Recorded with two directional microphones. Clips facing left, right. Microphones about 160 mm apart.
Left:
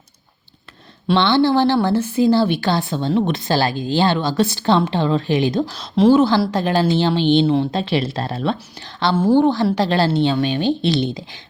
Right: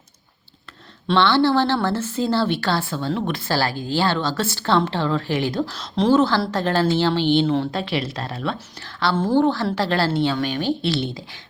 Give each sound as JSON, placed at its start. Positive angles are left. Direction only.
{"t": 1.1, "sound": "a woman's voice", "side_deg": 15}
{"t": 9.1, "sound": "a woman's voice", "side_deg": 10}